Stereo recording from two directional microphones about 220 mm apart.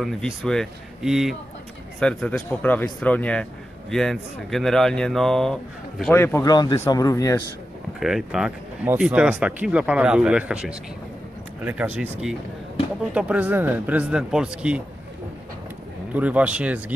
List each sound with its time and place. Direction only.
0.0 s speech: centre (ahead or behind)
8.0 s speech: centre (ahead or behind)
16.1 s speech: 5° right (ahead or behind)